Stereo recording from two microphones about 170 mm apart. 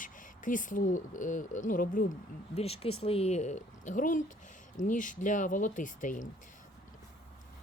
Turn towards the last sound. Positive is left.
turn(degrees=50)  # may be behind; listen again after turning